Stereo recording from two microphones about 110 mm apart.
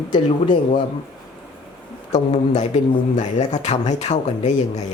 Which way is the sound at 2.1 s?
90° left.